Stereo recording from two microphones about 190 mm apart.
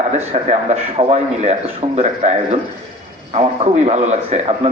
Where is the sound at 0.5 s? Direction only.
35° right (ahead or behind).